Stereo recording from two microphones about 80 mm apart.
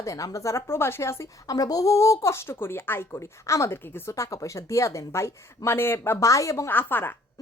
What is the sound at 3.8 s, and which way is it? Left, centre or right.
A woman's voice, left.